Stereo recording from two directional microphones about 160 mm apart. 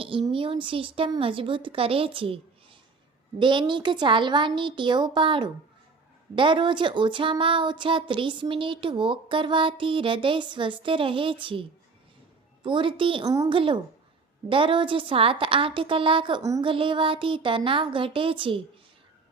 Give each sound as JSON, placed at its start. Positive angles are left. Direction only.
{"t": 0.0, "sound": "speech", "side_deg": -35}
{"t": 12.6, "sound": "speech", "side_deg": -30}